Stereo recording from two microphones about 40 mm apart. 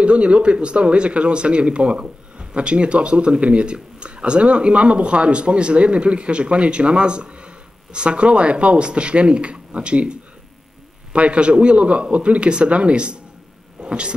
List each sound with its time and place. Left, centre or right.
0.0 s speech: right
11.1 s speech: right